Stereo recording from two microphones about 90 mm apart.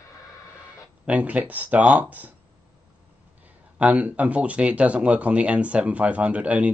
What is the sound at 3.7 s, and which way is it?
Speech, 15° right (ahead or behind).